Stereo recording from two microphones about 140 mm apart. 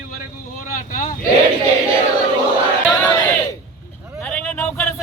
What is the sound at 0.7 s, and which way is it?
Speech, 75° left (ahead or behind).